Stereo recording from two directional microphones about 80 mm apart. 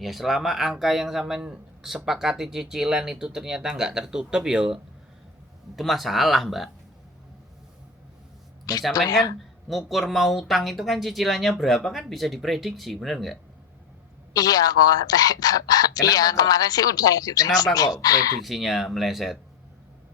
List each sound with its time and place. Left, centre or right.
0.0 s speech: centre
8.7 s speech: left
9.6 s speech: centre
14.3 s speech: left
18.4 s speech: centre